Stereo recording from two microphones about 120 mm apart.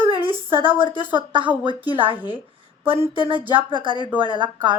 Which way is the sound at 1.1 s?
40° right (ahead or behind).